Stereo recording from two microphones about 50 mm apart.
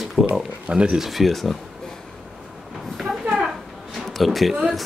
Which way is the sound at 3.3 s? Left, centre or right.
Centre.